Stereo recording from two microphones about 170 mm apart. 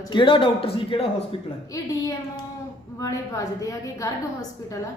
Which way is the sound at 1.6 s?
20° left (ahead or behind).